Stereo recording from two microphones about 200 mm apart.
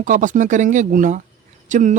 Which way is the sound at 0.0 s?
40° right (ahead or behind).